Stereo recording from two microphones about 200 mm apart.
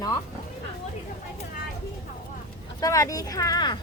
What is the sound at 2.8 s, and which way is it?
Speech, 15° left (ahead or behind).